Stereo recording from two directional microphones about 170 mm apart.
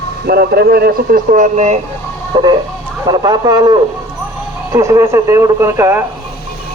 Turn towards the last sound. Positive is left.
turn(degrees=-15)  # may be behind; listen again after turning